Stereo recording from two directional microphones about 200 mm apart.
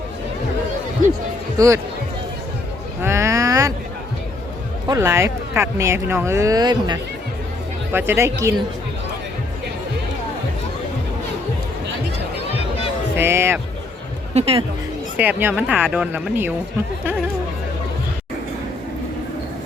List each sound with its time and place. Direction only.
1.5 s speech: 15° right (ahead or behind)
3.0 s a sound: 15° right (ahead or behind)
4.9 s speech: 15° right (ahead or behind)
12.5 s a sound: 30° left (ahead or behind)
13.1 s speech: 10° right (ahead or behind)
14.3 s speech: 30° right (ahead or behind)
15.2 s speech: 10° right (ahead or behind)